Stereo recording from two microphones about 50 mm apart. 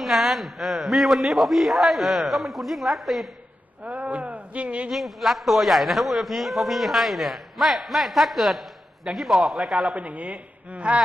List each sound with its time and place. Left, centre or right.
0.0 s a man's voice: centre
3.8 s a man's voice: right
4.9 s a man's voice: centre
9.9 s a woman's voice: right